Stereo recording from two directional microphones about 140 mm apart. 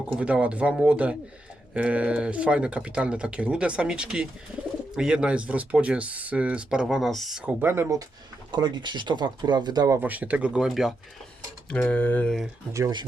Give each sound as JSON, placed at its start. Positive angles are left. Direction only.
{"t": 0.1, "sound": "speech", "side_deg": -5}
{"t": 7.6, "sound": "speech", "side_deg": -20}
{"t": 8.5, "sound": "speech", "side_deg": -30}
{"t": 10.0, "sound": "speech", "side_deg": -10}
{"t": 11.7, "sound": "speech", "side_deg": 10}